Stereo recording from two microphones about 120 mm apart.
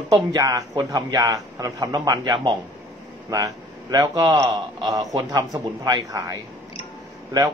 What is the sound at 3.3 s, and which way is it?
A man's voice, 30° right (ahead or behind).